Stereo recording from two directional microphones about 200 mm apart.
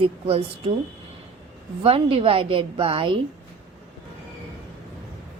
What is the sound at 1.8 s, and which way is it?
A woman's voice, 30° right (ahead or behind).